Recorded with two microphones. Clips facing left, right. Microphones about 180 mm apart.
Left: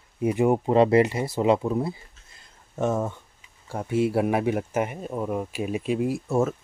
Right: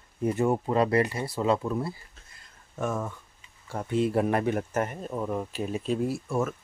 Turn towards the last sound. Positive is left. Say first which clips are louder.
# left 5 dB
turn(degrees=25)  # may be behind; listen again after turning